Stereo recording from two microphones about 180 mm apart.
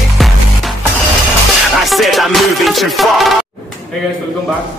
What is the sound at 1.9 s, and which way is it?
Music, centre (ahead or behind).